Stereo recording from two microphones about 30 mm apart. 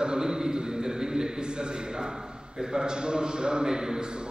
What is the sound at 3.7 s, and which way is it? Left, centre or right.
Speech, centre.